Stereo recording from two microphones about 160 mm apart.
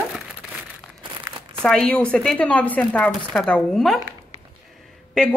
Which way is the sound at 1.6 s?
5° left (ahead or behind).